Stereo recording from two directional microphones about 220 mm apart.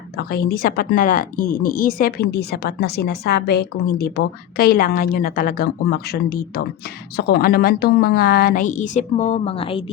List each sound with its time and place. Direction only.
0.2 s a woman's voice: 45° left (ahead or behind); by 9.8 s 25° left (ahead or behind)